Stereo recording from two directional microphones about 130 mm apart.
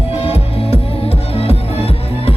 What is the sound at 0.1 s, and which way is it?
Music, 50° left (ahead or behind).